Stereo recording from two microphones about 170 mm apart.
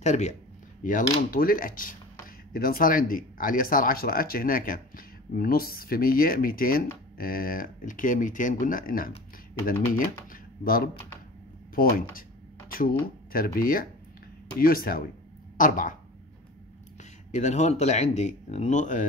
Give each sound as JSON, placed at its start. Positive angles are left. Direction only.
{"t": 0.0, "sound": "speech", "side_deg": 40}
{"t": 1.3, "sound": "speech", "side_deg": 55}
{"t": 17.3, "sound": "speech", "side_deg": 45}